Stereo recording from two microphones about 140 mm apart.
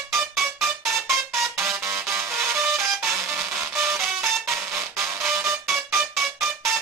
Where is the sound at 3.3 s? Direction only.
5° right (ahead or behind).